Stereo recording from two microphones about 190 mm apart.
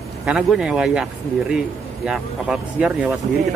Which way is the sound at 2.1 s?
5° right (ahead or behind).